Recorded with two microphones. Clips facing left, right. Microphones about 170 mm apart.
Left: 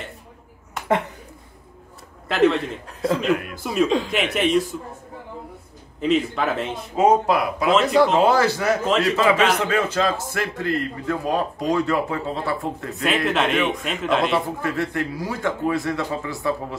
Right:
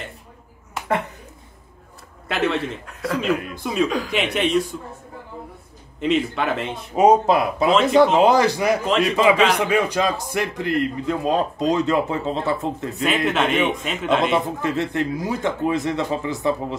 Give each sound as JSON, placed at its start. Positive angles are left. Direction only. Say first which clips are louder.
{"t": 2.2, "sound": "a man's voice", "louder": "left 4 dB", "side_deg": 0}
{"t": 2.9, "sound": "a man's voice", "louder": "left 5 dB", "side_deg": 25}
{"t": 3.2, "sound": "a man's voice", "louder": "even", "side_deg": 0}
{"t": 5.9, "sound": "a man's voice", "louder": "even", "side_deg": 0}
{"t": 7.0, "sound": "a man's voice", "louder": "right 2 dB", "side_deg": -20}
{"t": 7.7, "sound": "a man's voice", "louder": "right 1 dB", "side_deg": 0}
{"t": 8.0, "sound": "a man's voice", "louder": "right 3 dB", "side_deg": -20}
{"t": 12.9, "sound": "a man's voice", "louder": "even", "side_deg": 0}
{"t": 14.6, "sound": "a man's voice", "louder": "right 2 dB", "side_deg": -20}